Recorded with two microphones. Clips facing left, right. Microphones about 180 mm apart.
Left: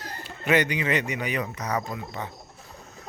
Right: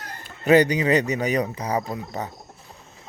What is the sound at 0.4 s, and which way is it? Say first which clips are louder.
Speech: right 7 dB; 35° right (ahead or behind).